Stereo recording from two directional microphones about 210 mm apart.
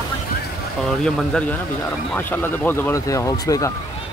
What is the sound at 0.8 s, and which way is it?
Speech, centre (ahead or behind).